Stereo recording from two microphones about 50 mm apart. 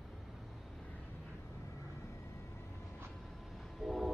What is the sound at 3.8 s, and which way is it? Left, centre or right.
Train, centre.